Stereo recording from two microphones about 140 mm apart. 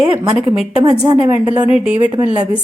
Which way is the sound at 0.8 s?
30° right (ahead or behind).